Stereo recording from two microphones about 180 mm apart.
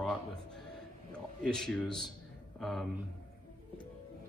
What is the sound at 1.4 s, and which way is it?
Speech, centre (ahead or behind).